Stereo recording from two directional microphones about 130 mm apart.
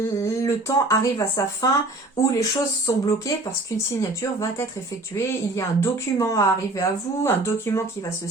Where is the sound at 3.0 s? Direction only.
20° left (ahead or behind).